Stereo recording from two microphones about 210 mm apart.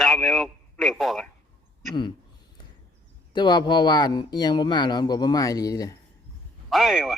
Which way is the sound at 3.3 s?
20° left (ahead or behind).